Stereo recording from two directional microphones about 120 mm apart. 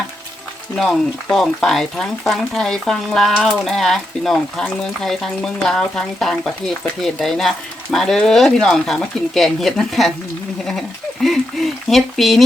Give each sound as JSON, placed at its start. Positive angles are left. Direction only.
{"t": 0.8, "sound": "speech", "side_deg": 5}